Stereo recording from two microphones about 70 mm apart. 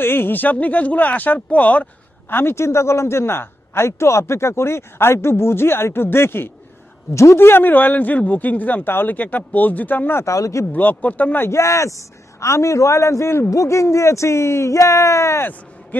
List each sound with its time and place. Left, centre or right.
0.0 s a man's voice: left
10.2 s a man's voice: left
10.7 s a man's voice: left
11.4 s a man's voice: left
15.9 s a sound: left